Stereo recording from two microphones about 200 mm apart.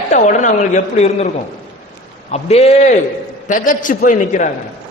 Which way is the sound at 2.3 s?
30° left (ahead or behind).